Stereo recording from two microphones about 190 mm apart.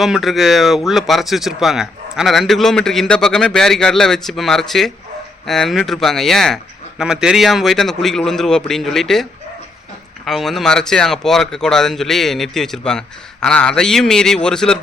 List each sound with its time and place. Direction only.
0.0 s speech: centre (ahead or behind)
10.2 s speech: centre (ahead or behind)